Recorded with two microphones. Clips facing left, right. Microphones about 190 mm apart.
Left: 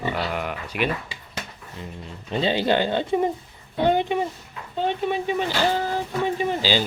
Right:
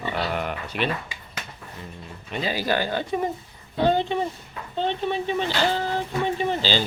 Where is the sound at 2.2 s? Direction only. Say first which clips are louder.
Left 4 dB; 30° left (ahead or behind); by 6.8 s 10° left (ahead or behind).